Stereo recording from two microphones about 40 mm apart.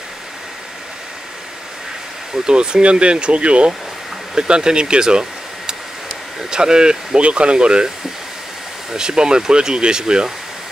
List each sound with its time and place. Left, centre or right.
2.3 s speech: right
6.5 s speech: centre
8.9 s speech: centre